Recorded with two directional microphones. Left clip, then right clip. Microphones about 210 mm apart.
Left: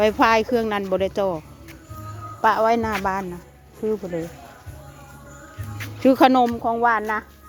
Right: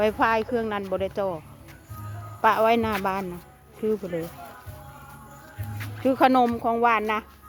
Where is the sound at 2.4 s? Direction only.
5° left (ahead or behind).